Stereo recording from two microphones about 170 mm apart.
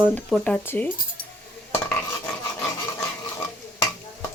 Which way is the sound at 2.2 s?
20° left (ahead or behind).